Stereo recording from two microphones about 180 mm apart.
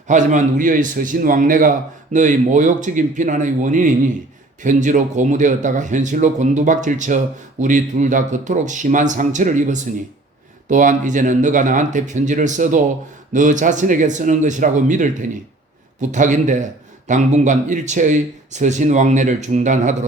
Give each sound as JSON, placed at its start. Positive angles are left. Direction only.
{"t": 0.1, "sound": "speech", "side_deg": -45}